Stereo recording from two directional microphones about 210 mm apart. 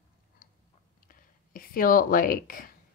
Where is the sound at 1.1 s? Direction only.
40° left (ahead or behind).